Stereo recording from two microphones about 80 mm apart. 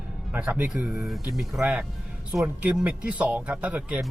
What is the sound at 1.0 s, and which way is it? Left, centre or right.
Speech, centre.